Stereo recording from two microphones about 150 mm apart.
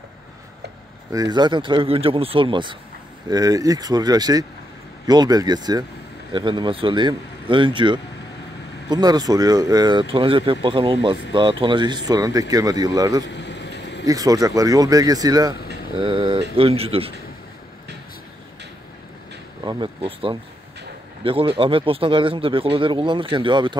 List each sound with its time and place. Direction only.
1.1 s a man's voice: 25° right (ahead or behind)
19.6 s a sound: 30° right (ahead or behind)
20.0 s a man's voice: 40° right (ahead or behind)